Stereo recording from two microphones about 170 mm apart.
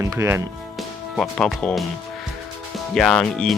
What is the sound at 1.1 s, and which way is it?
Speech, centre (ahead or behind).